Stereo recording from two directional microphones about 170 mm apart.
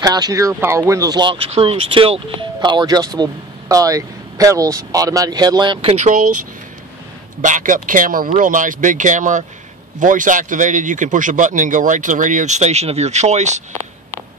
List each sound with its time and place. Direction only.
0.0 s speech: 20° right (ahead or behind)
5.9 s speech: 50° right (ahead or behind)
7.4 s speech: 50° right (ahead or behind)